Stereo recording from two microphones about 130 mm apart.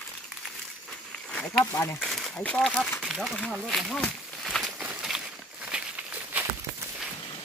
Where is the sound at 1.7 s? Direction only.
20° left (ahead or behind).